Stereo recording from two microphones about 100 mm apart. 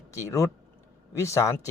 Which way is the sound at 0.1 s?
30° left (ahead or behind).